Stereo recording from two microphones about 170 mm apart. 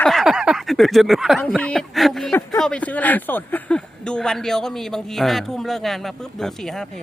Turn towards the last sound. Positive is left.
turn(degrees=0)  # may be behind; listen again after turning